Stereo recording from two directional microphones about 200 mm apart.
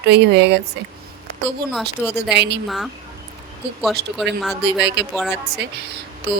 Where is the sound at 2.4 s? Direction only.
60° right (ahead or behind).